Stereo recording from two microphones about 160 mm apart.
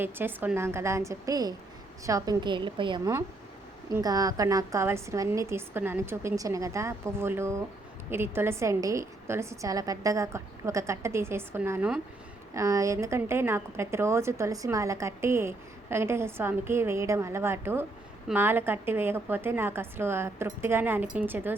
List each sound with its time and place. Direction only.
0.0 s a woman's voice: 15° right (ahead or behind)